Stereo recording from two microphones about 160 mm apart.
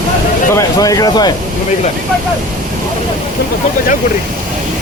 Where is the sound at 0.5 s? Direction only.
20° left (ahead or behind).